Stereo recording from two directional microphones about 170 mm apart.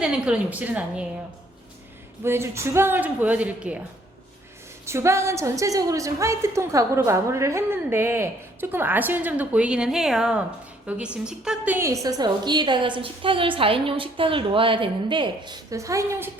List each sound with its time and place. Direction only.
0.0 s a woman's voice: 5° right (ahead or behind)
2.2 s a woman's voice: 15° right (ahead or behind)
4.9 s a woman's voice: 15° right (ahead or behind)
12.0 s a woman's voice: 25° right (ahead or behind)